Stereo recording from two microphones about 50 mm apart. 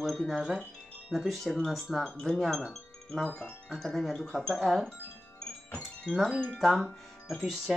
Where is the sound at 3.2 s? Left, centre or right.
Centre.